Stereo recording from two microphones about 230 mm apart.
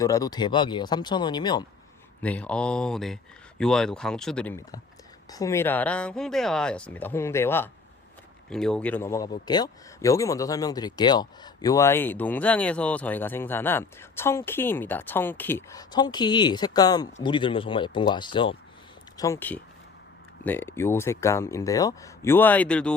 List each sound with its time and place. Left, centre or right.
0.0 s speech: centre
2.2 s speech: centre